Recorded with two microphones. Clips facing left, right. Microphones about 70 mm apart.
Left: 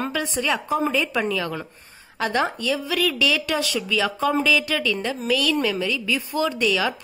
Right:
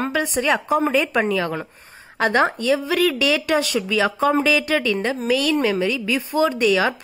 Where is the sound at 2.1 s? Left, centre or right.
Right.